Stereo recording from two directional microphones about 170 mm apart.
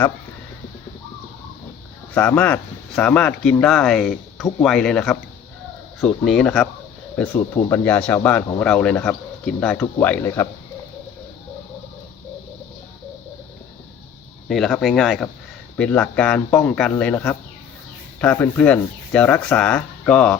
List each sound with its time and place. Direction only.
2.1 s speech: 10° left (ahead or behind)
14.4 s speech: centre (ahead or behind)